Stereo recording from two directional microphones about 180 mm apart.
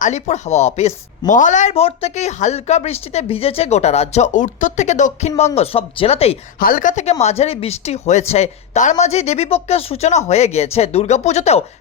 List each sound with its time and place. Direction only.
0.0 s speech: 40° left (ahead or behind)
6.6 s speech: 50° left (ahead or behind)